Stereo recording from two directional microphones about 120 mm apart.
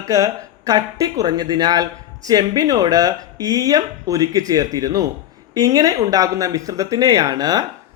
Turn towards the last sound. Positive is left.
turn(degrees=-35)  # may be behind; listen again after turning